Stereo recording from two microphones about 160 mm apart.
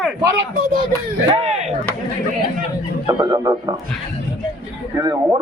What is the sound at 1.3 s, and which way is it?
Speech, 40° right (ahead or behind).